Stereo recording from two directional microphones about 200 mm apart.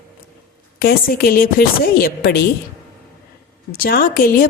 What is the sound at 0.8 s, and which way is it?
A woman's voice, 50° left (ahead or behind).